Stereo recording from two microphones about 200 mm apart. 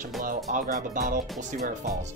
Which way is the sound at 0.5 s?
40° right (ahead or behind).